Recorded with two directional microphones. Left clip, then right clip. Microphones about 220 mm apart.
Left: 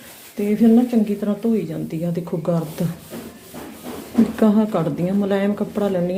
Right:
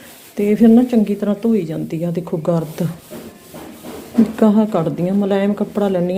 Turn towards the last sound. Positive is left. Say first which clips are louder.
# right 3 dB
turn(degrees=-20)  # may be behind; listen again after turning